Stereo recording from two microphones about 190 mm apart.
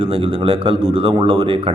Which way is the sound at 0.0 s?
30° right (ahead or behind).